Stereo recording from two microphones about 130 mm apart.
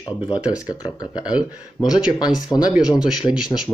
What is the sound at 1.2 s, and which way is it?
Speech, 5° right (ahead or behind).